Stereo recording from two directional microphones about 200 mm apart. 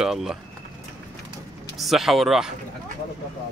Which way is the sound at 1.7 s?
Centre (ahead or behind).